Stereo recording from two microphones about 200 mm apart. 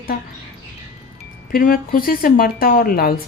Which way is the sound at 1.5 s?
45° left (ahead or behind).